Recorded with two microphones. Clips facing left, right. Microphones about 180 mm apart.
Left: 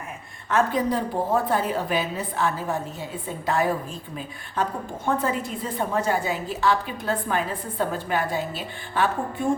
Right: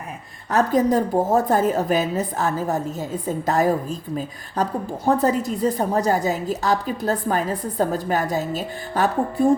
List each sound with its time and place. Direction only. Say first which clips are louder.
0.5 s a woman's voice: right 4 dB; 45° right (ahead or behind)